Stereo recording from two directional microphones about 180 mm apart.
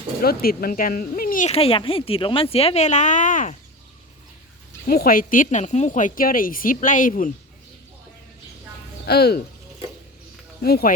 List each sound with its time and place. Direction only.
0.2 s speech: 55° left (ahead or behind)
4.9 s speech: 55° left (ahead or behind)
9.0 s speech: 60° left (ahead or behind)
10.6 s speech: 60° left (ahead or behind)